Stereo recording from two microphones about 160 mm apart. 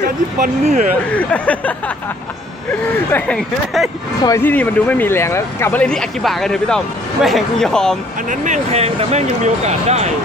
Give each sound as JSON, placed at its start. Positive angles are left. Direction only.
{"t": 0.4, "sound": "speech", "side_deg": -50}
{"t": 1.1, "sound": "speech", "side_deg": 10}
{"t": 3.1, "sound": "speech", "side_deg": 10}
{"t": 8.3, "sound": "speech", "side_deg": -45}